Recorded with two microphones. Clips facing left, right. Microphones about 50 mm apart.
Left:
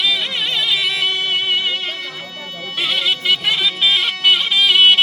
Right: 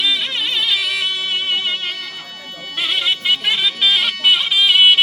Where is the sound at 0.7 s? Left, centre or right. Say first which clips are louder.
Left 1 dB; centre.